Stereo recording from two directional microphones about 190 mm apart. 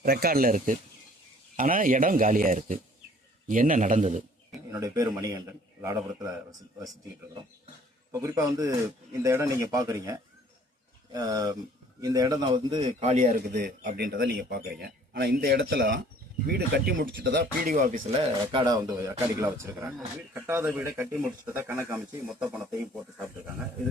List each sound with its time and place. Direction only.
0.0 s a man's voice: 55° right (ahead or behind)
4.7 s speech: 15° right (ahead or behind)
8.1 s speech: 15° right (ahead or behind)
13.0 s a man's voice: 40° right (ahead or behind)
13.5 s a man's voice: 55° right (ahead or behind)
17.7 s speech: 40° right (ahead or behind); by 21.9 s 10° right (ahead or behind)
22.3 s speech: centre (ahead or behind)